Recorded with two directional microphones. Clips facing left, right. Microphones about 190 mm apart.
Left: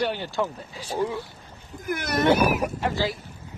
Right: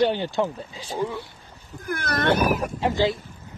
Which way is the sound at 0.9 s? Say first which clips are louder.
Left 1 dB; 15° left (ahead or behind).